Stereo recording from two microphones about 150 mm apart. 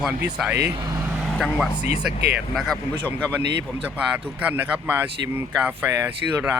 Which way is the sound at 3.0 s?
10° left (ahead or behind).